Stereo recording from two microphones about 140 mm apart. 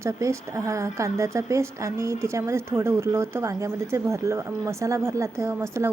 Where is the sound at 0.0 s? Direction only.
20° right (ahead or behind).